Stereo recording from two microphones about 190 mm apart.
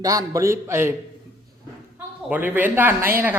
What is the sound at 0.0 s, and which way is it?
Speech, 20° right (ahead or behind).